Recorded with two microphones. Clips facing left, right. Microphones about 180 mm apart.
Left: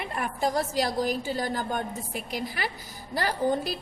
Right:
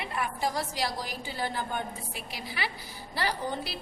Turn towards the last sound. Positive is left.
turn(degrees=45)  # may be behind; listen again after turning